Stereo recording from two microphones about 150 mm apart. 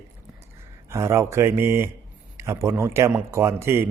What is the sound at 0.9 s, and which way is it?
Speech, 20° right (ahead or behind).